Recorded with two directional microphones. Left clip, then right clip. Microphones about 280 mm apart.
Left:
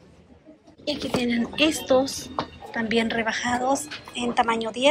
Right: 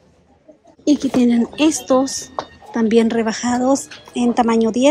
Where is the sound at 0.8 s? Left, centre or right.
Right.